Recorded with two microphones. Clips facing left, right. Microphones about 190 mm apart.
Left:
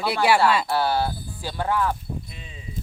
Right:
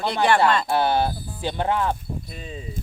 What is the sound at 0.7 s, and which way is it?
Speech, 20° right (ahead or behind).